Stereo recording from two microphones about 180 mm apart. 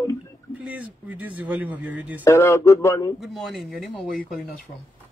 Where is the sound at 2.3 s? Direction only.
15° left (ahead or behind).